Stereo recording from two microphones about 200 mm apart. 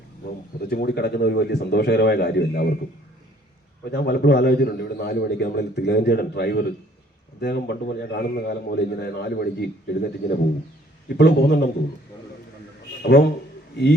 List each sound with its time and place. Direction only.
0.6 s a man's voice: 55° left (ahead or behind)
3.9 s a man's voice: 55° left (ahead or behind)
13.0 s a man's voice: 55° left (ahead or behind)